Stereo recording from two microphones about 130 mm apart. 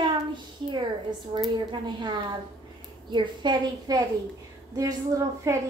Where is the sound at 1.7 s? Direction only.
35° right (ahead or behind).